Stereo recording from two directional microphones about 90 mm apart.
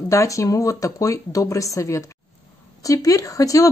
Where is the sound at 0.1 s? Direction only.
35° left (ahead or behind).